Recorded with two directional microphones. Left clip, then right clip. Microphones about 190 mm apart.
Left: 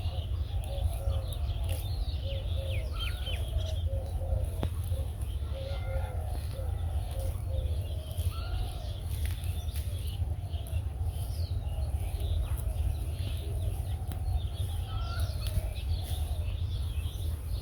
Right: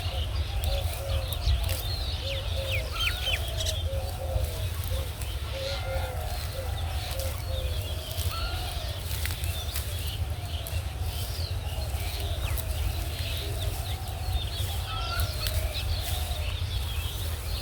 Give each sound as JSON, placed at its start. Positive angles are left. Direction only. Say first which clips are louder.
{"t": 2.6, "sound": "chicken", "louder": "right 12 dB", "side_deg": -55}